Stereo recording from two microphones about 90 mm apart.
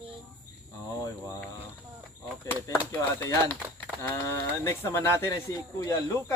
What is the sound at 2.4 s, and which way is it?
Speech, 25° left (ahead or behind).